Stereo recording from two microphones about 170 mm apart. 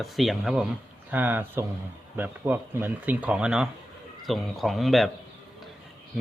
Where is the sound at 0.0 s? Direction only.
Centre (ahead or behind).